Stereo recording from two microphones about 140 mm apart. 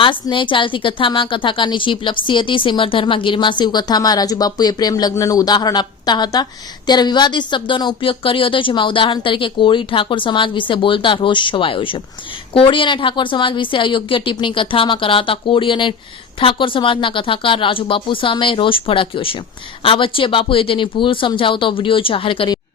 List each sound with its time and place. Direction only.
0.0 s a woman's voice: 35° left (ahead or behind)